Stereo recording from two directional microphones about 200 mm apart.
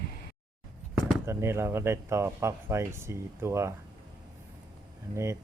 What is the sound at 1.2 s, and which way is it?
Speech, 15° right (ahead or behind).